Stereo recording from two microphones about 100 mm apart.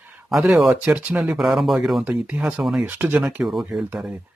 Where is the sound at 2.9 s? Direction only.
15° right (ahead or behind).